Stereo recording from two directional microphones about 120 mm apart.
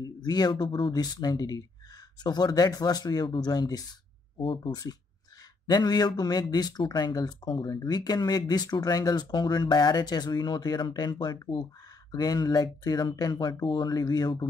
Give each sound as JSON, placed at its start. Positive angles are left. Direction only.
{"t": 0.0, "sound": "speech", "side_deg": 35}
{"t": 4.4, "sound": "speech", "side_deg": 45}
{"t": 5.7, "sound": "speech", "side_deg": 35}